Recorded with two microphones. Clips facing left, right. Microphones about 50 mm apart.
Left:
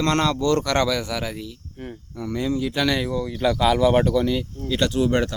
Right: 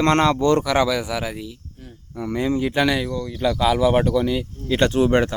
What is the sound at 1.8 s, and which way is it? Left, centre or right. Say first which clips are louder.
Speech: left 8 dB; left.